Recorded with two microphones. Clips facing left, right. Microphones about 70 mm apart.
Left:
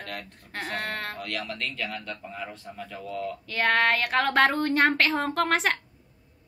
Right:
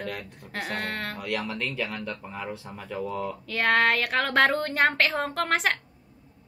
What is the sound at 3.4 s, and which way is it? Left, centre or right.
A woman's voice, centre.